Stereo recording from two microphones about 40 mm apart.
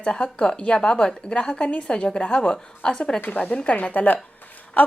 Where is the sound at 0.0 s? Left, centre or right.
Left.